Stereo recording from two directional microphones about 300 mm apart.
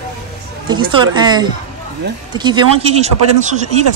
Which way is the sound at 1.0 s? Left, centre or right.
Centre.